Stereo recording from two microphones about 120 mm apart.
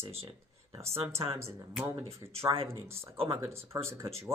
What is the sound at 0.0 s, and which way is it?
Speech, 55° right (ahead or behind).